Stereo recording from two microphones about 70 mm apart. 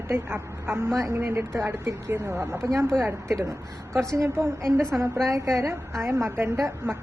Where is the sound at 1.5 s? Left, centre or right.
Right.